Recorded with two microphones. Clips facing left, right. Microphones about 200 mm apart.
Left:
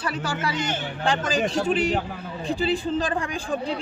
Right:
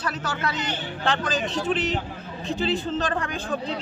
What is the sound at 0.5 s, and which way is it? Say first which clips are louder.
Speech: left 2 dB; 45° left (ahead or behind).